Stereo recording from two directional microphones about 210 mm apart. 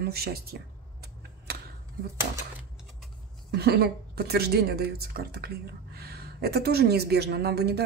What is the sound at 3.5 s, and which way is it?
Speech, 50° right (ahead or behind).